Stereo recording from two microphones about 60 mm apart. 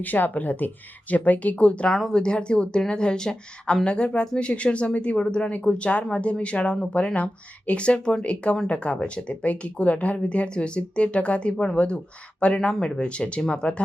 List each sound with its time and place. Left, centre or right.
0.0 s speech: left
1.9 s speech: centre